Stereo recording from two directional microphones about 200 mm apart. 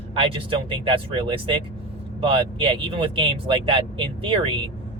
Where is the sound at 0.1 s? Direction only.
25° right (ahead or behind).